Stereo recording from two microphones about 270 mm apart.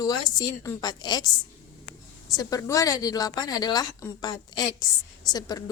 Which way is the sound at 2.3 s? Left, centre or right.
Centre.